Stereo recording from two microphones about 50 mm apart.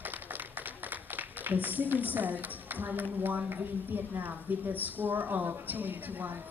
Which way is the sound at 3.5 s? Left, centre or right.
Right.